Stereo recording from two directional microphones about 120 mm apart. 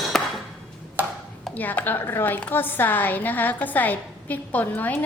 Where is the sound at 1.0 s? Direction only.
15° right (ahead or behind).